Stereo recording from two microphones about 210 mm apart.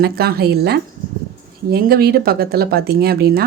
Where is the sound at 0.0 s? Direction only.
45° right (ahead or behind).